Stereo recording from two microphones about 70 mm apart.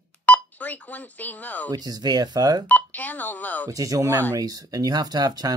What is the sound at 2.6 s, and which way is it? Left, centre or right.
Speech, left.